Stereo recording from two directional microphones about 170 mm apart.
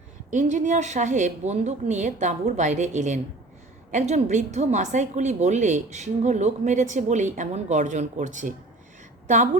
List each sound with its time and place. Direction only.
0.3 s a woman's voice: 45° right (ahead or behind)